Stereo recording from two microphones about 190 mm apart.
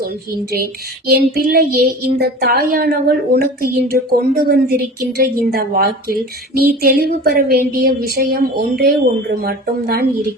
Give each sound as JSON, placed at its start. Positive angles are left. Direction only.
{"t": 0.5, "sound": "child singing", "side_deg": -50}
{"t": 9.3, "sound": "speech", "side_deg": -55}